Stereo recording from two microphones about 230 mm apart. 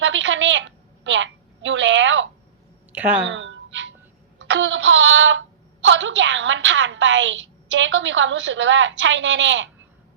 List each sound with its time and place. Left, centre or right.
0.0 s a woman's voice: right
2.9 s a woman's voice: centre
3.2 s a sound: right
5.9 s a woman's voice: right